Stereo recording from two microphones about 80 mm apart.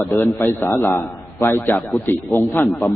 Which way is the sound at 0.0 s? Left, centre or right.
Left.